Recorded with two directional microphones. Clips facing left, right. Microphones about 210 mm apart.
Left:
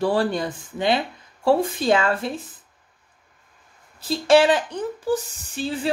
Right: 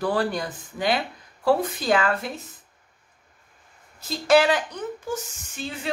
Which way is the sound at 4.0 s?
30° left (ahead or behind).